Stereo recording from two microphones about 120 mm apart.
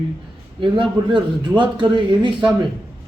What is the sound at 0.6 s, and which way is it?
A man's voice, 40° right (ahead or behind).